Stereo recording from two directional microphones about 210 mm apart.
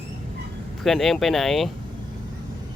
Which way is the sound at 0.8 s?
Centre (ahead or behind).